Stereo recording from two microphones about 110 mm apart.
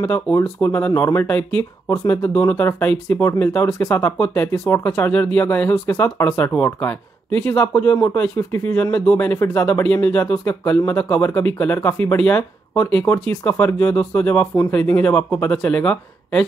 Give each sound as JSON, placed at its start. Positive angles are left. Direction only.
{"t": 0.6, "sound": "speech", "side_deg": 15}